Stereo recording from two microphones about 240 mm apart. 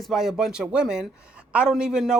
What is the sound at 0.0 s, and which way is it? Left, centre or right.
A woman's voice, centre.